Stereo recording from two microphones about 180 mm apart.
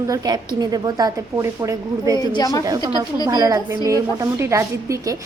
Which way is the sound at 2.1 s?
25° left (ahead or behind).